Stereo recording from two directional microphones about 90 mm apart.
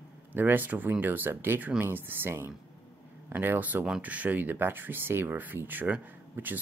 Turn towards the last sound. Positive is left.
turn(degrees=-20)  # may be behind; listen again after turning